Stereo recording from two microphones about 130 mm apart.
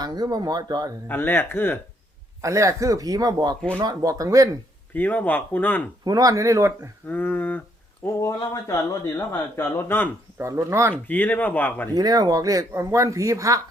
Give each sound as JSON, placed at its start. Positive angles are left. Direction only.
{"t": 0.0, "sound": "speech", "side_deg": -30}
{"t": 1.0, "sound": "speech", "side_deg": 15}
{"t": 2.4, "sound": "speech", "side_deg": -25}
{"t": 4.9, "sound": "speech", "side_deg": 15}
{"t": 6.1, "sound": "speech", "side_deg": -30}
{"t": 7.1, "sound": "speech", "side_deg": 15}
{"t": 10.3, "sound": "speech", "side_deg": -25}
{"t": 10.9, "sound": "speech", "side_deg": 15}
{"t": 11.9, "sound": "speech", "side_deg": -30}